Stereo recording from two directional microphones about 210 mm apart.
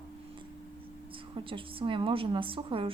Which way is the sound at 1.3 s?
25° right (ahead or behind).